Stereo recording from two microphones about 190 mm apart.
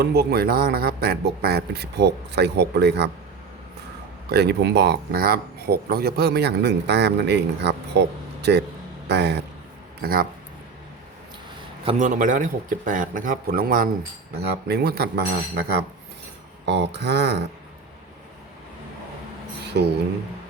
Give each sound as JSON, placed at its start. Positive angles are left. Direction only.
{"t": 0.0, "sound": "speech", "side_deg": -60}
{"t": 4.3, "sound": "speech", "side_deg": -60}
{"t": 11.9, "sound": "speech", "side_deg": -40}
{"t": 14.3, "sound": "speech", "side_deg": -60}
{"t": 16.6, "sound": "speech", "side_deg": -65}
{"t": 19.8, "sound": "a sound", "side_deg": -65}